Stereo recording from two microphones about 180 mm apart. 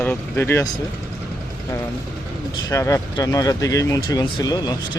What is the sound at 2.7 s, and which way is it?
Speech, 15° left (ahead or behind).